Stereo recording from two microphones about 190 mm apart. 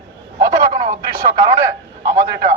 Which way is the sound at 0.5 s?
25° right (ahead or behind).